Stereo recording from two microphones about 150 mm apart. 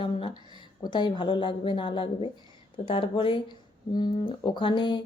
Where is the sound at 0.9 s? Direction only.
30° left (ahead or behind).